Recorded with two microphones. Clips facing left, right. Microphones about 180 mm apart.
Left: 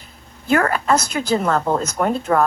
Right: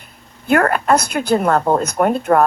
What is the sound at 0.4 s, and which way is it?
Speech, 55° right (ahead or behind).